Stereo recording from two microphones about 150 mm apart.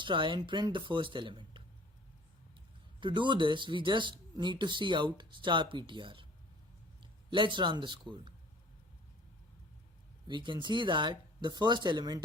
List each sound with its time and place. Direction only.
0.0 s speech: 35° right (ahead or behind)
3.0 s a man's voice: 30° right (ahead or behind)
10.2 s speech: 30° right (ahead or behind)